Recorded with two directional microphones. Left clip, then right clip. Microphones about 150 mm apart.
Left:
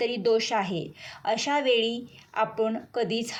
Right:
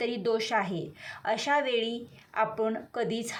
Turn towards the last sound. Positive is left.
turn(degrees=10)  # may be behind; listen again after turning